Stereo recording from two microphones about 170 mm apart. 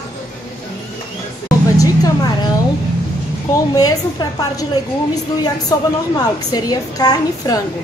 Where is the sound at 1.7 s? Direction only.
20° left (ahead or behind).